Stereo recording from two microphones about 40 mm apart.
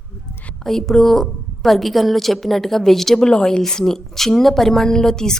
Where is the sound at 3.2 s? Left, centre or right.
Left.